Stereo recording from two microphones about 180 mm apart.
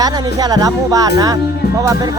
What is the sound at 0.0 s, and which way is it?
Speech, 20° right (ahead or behind).